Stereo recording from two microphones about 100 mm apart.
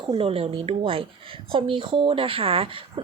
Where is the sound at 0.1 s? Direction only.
70° right (ahead or behind).